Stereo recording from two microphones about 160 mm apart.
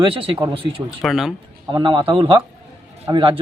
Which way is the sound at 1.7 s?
30° right (ahead or behind).